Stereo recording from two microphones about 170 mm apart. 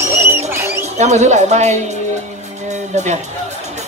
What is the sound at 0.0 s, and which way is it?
Music, 15° right (ahead or behind).